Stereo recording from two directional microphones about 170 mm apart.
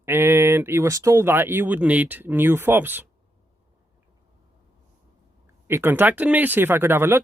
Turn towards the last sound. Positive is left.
turn(degrees=-15)  # may be behind; listen again after turning